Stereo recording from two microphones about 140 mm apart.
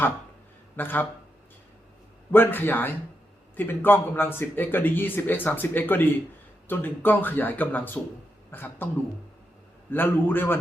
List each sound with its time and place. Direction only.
0.8 s a man's voice: 15° left (ahead or behind)
2.3 s a man's voice: 15° left (ahead or behind)
9.9 s a man's voice: 15° left (ahead or behind)